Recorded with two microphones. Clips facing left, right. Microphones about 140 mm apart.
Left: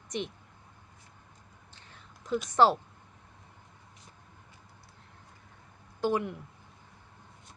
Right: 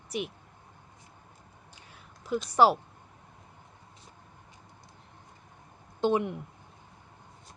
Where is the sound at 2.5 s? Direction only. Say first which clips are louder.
Right 1 dB; 10° right (ahead or behind).